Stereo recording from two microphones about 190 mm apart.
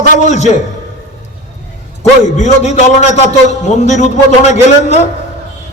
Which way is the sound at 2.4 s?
35° left (ahead or behind).